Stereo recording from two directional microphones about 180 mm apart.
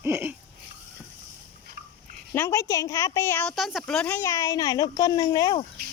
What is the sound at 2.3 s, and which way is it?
A woman's voice, 15° left (ahead or behind).